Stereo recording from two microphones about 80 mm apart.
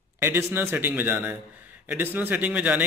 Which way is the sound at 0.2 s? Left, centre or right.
Right.